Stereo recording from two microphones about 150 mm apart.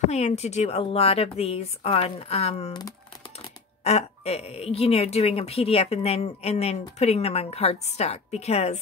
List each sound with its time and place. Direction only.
0.1 s speech: 45° left (ahead or behind)
3.8 s speech: 45° left (ahead or behind)